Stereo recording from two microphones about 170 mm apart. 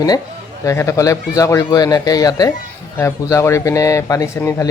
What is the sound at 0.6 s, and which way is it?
Speech, 15° left (ahead or behind).